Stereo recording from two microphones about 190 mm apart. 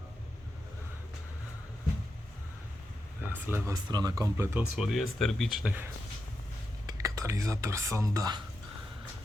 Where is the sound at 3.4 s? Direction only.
15° right (ahead or behind).